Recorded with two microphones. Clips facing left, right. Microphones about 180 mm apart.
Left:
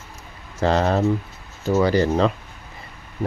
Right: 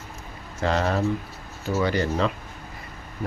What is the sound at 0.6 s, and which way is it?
Speech, 35° left (ahead or behind).